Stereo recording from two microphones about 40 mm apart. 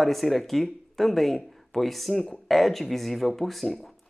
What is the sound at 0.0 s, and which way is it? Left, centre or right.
Speech, centre.